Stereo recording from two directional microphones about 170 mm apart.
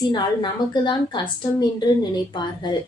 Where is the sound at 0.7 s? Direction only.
25° left (ahead or behind).